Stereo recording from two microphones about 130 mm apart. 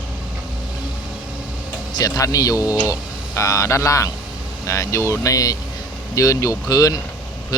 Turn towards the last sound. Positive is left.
turn(degrees=30)  # may be behind; listen again after turning